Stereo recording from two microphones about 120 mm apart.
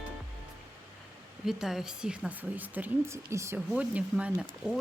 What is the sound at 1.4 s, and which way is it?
A woman's voice, 5° right (ahead or behind).